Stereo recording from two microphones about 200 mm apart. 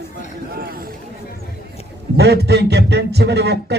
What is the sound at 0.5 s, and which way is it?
Speech, 50° right (ahead or behind).